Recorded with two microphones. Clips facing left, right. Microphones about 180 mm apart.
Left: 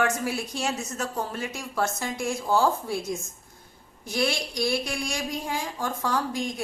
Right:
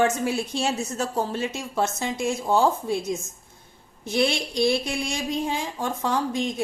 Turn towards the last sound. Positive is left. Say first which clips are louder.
# right 3 dB
turn(degrees=-20)  # may be behind; listen again after turning